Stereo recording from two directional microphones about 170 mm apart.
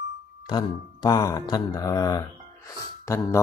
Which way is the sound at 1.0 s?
20° left (ahead or behind).